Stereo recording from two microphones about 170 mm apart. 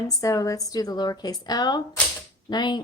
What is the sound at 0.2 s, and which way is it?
Speech, 20° left (ahead or behind).